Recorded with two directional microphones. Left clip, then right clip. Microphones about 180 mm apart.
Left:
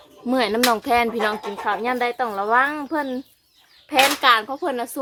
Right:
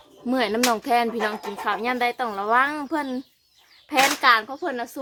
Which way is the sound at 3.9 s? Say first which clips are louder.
Left 2 dB; 5° left (ahead or behind).